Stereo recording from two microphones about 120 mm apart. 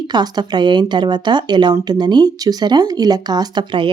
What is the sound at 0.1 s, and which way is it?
Speech, 35° right (ahead or behind).